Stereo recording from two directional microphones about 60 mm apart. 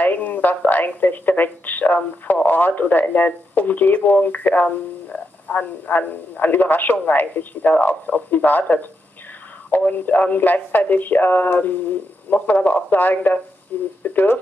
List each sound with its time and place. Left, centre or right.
0.0 s speech: left